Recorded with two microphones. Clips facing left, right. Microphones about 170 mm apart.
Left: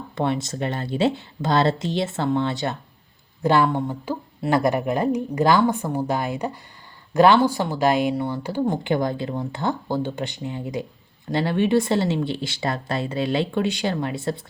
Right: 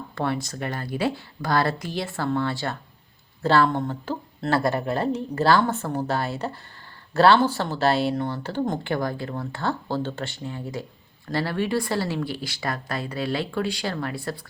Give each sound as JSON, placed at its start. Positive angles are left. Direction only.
{"t": 0.2, "sound": "speech", "side_deg": 20}